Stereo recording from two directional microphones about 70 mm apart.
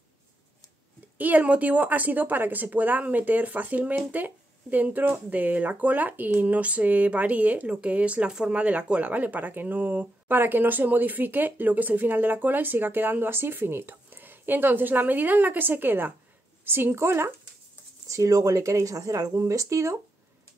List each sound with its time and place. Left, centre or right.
1.1 s a woman's voice: right
18.0 s speech: right